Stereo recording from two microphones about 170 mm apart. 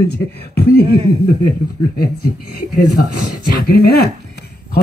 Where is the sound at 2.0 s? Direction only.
65° left (ahead or behind).